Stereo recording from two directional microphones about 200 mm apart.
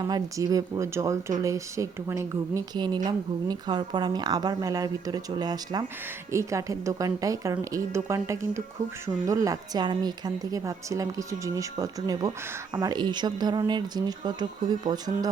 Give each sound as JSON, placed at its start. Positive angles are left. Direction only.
{"t": 0.0, "sound": "a woman's voice", "side_deg": -20}